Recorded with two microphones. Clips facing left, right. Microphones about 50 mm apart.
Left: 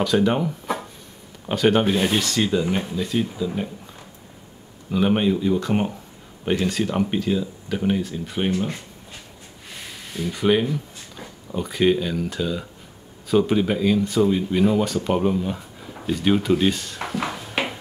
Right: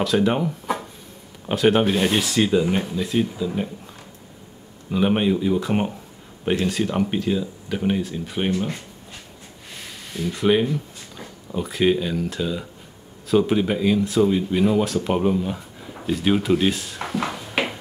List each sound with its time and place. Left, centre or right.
0.0 s speech: centre
4.9 s speech: centre
10.1 s speech: centre
17.5 s a sound: centre